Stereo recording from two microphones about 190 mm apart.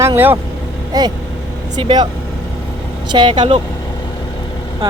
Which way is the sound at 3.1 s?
25° right (ahead or behind).